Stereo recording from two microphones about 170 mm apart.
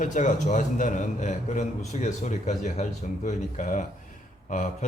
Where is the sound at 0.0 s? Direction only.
45° left (ahead or behind).